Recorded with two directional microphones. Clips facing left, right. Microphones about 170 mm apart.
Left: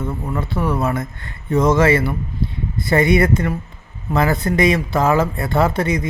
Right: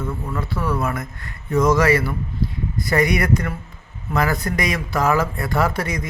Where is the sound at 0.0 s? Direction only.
25° left (ahead or behind).